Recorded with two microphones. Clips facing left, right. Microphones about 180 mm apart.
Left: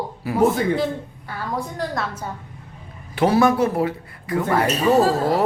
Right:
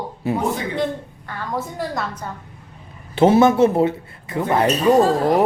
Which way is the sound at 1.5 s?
5° right (ahead or behind).